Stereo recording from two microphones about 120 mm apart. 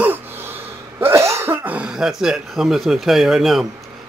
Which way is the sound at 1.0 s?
25° right (ahead or behind).